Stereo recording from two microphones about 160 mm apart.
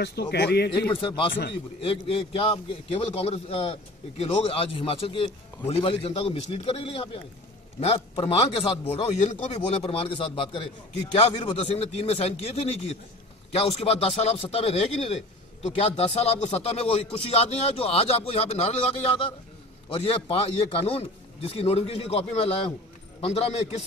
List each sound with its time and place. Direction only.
0.0 s speech: 90° left
1.0 s speech: 30° left (ahead or behind)